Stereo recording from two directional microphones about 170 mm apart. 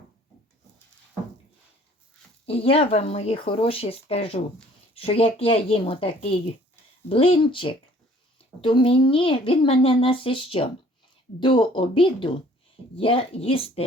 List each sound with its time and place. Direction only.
2.5 s a woman's voice: 35° left (ahead or behind)